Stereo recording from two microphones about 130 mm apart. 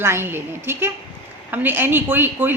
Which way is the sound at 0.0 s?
20° right (ahead or behind).